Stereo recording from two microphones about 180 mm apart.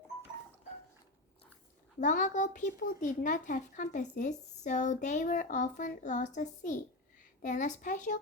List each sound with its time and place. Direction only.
2.0 s speech: 45° left (ahead or behind)